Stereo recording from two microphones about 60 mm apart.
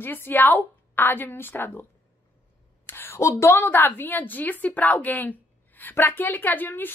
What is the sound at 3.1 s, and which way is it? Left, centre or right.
A woman's voice, left.